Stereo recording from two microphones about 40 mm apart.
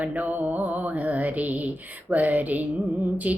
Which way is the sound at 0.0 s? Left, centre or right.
Right.